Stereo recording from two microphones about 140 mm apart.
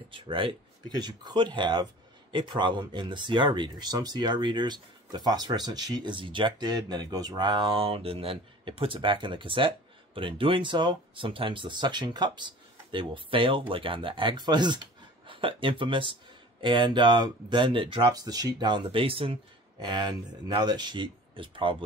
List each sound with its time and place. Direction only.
0.1 s speech: 40° right (ahead or behind)